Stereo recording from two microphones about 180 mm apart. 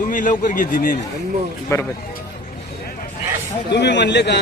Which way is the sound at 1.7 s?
15° left (ahead or behind).